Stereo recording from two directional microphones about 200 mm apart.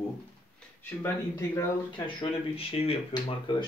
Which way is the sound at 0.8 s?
15° left (ahead or behind).